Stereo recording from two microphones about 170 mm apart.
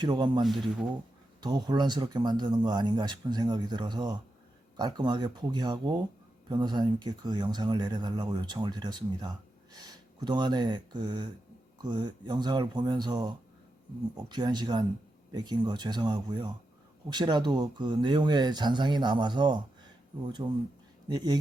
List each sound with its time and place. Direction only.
0.0 s speech: 25° right (ahead or behind)
0.4 s speech: centre (ahead or behind)
1.4 s speech: 25° right (ahead or behind)